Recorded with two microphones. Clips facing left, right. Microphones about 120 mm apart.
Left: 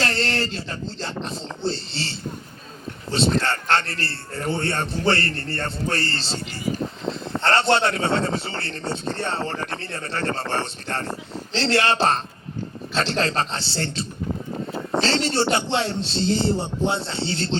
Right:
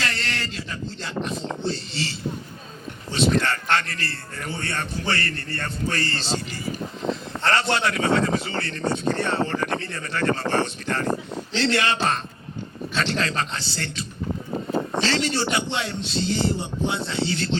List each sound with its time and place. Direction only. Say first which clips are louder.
0.0 s a man's voice: left 5 dB; 30° left (ahead or behind)
7.3 s a man's voice: left 5 dB; 30° left (ahead or behind)